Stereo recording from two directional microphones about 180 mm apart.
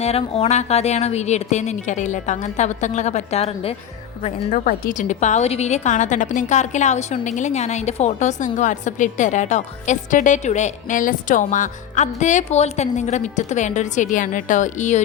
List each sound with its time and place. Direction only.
0.0 s a woman's voice: 35° left (ahead or behind)